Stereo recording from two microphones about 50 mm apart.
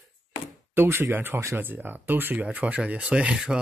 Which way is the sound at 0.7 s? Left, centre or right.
Right.